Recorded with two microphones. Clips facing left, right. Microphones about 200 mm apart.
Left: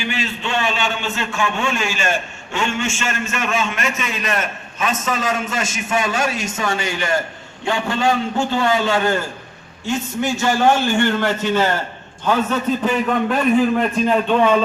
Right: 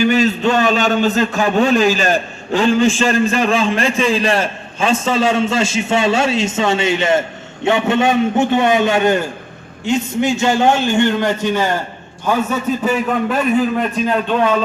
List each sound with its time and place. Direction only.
0.0 s a man's voice: 40° right (ahead or behind); by 14.5 s centre (ahead or behind)